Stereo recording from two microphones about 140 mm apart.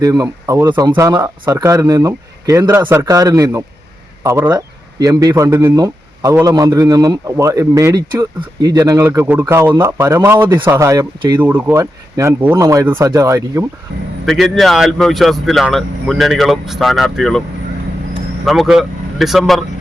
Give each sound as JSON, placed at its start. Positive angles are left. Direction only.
{"t": 0.0, "sound": "speech", "side_deg": -25}
{"t": 0.9, "sound": "speech", "side_deg": -20}
{"t": 11.8, "sound": "speech", "side_deg": -25}
{"t": 12.4, "sound": "speech", "side_deg": -15}
{"t": 12.6, "sound": "speech", "side_deg": -30}
{"t": 14.3, "sound": "speech", "side_deg": 0}
{"t": 18.4, "sound": "speech", "side_deg": 0}